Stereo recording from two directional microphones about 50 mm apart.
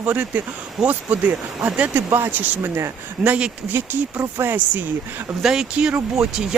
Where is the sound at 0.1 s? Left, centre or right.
Right.